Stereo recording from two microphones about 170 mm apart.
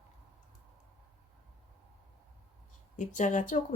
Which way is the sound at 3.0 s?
45° left (ahead or behind).